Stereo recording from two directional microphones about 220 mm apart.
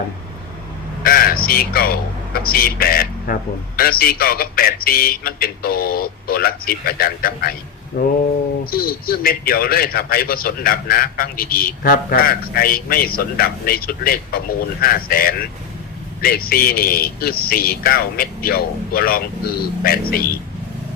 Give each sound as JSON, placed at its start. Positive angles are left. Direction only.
{"t": 1.0, "sound": "speech", "side_deg": 40}
{"t": 8.7, "sound": "speech", "side_deg": 40}